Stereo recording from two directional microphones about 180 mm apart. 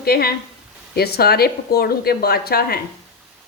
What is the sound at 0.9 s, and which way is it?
A woman's voice, 60° left (ahead or behind).